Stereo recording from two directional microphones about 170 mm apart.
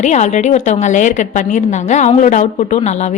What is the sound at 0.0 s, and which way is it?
A woman's voice, 45° left (ahead or behind).